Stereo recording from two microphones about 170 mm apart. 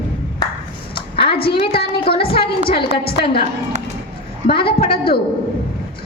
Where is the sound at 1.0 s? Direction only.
30° left (ahead or behind).